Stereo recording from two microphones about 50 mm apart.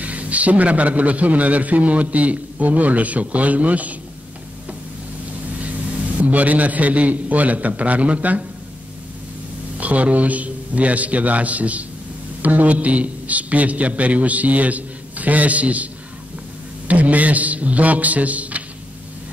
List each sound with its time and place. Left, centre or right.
0.0 s a man's voice: right
6.3 s a man's voice: right
9.8 s a man's voice: right